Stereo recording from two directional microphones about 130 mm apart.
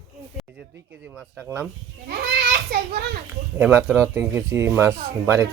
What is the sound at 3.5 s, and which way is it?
Speech, 15° right (ahead or behind).